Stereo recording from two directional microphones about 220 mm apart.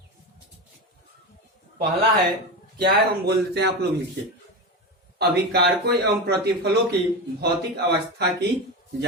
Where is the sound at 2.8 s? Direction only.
45° right (ahead or behind).